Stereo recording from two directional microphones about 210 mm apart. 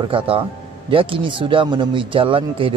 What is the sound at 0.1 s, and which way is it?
Speech, 25° right (ahead or behind).